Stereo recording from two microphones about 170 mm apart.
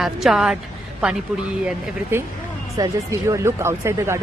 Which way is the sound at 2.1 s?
10° right (ahead or behind).